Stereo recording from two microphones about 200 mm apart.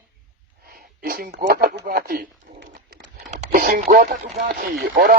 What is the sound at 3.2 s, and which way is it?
Speech, 40° right (ahead or behind).